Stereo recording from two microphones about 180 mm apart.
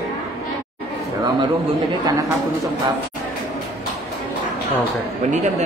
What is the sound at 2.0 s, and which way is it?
Speech, 20° right (ahead or behind).